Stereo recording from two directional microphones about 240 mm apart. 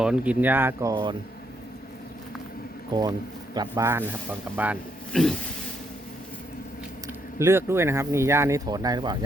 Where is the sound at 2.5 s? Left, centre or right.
Left.